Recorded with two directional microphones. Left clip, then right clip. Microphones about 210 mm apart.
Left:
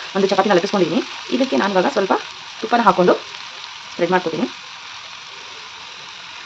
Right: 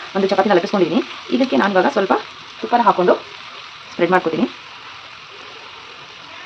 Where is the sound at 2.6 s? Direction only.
35° left (ahead or behind).